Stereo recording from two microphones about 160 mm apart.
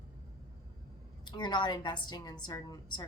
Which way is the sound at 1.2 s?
25° left (ahead or behind).